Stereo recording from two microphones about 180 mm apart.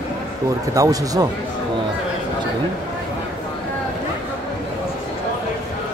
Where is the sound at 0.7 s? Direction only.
20° right (ahead or behind).